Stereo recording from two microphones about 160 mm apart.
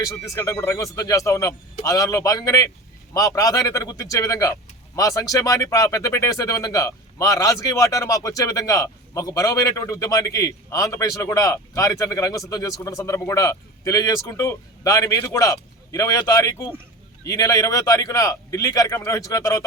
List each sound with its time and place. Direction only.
0.3 s speech: 20° left (ahead or behind)